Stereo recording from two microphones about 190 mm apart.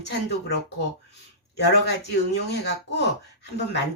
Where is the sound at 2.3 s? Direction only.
60° left (ahead or behind).